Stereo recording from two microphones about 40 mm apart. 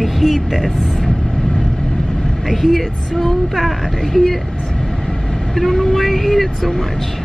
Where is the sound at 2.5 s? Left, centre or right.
Centre.